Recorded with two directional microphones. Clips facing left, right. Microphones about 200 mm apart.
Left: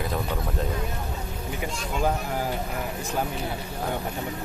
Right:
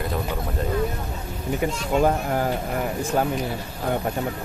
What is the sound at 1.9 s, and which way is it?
Speech, 50° right (ahead or behind).